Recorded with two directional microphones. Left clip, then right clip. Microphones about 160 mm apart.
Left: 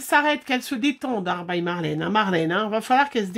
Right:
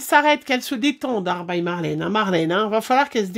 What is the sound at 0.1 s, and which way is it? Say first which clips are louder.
A woman's voice: right 4 dB; 40° right (ahead or behind).